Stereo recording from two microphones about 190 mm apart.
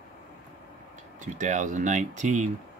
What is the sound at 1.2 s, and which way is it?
Speech, 40° right (ahead or behind).